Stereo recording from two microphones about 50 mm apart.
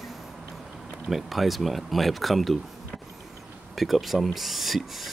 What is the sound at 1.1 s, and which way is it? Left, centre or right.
Speech, centre.